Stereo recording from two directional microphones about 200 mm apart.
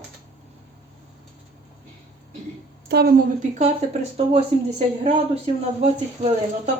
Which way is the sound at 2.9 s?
55° right (ahead or behind).